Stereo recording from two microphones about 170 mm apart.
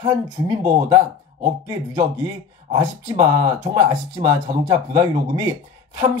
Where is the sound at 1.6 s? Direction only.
20° right (ahead or behind).